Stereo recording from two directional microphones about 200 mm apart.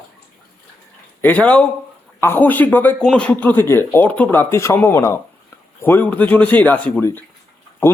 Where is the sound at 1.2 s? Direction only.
10° left (ahead or behind).